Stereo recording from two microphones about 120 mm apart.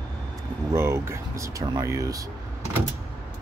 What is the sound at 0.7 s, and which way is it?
Speech, 20° right (ahead or behind).